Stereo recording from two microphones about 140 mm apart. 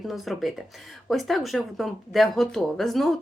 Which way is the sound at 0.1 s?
Centre (ahead or behind).